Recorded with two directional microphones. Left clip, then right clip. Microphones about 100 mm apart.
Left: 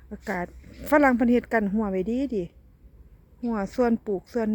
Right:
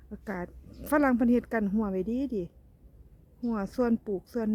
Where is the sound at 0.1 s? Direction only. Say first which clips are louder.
Left 7 dB; 10° left (ahead or behind).